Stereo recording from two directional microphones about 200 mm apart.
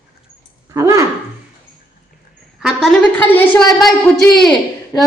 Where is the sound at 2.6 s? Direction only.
Centre (ahead or behind).